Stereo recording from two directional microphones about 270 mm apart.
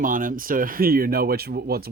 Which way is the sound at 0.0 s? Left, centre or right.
Right.